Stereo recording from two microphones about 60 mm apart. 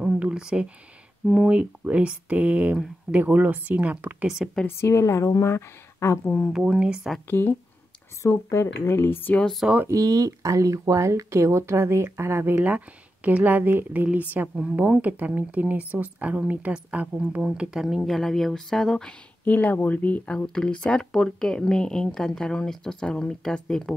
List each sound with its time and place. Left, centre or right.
0.2 s a sound: centre
1.3 s speech: centre
4.6 s speech: left
5.4 s speech: left
6.5 s speech: centre
7.2 s speech: left
8.2 s speech: left
9.8 s speech: right
12.5 s speech: right
17.4 s speech: centre
18.0 s speech: centre
19.4 s speech: left
20.3 s speech: centre